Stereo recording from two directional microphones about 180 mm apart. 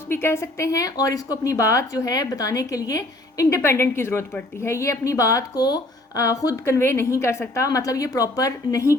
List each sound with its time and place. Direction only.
0.1 s a woman's voice: 10° left (ahead or behind)